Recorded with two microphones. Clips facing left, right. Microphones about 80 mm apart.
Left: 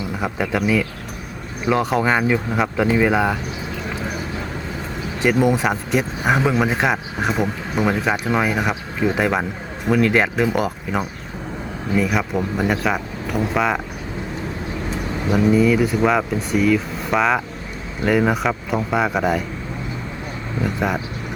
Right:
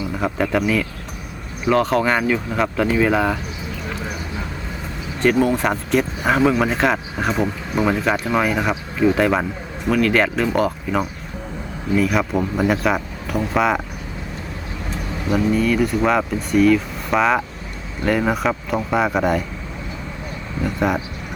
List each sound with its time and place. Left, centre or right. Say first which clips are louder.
0.2 s speech: right 2 dB; centre
5.2 s speech: even; centre
9.9 s speech: even; left
11.9 s speech: right 2 dB; centre
15.3 s speech: left 2 dB; centre
20.7 s speech: right 2 dB; centre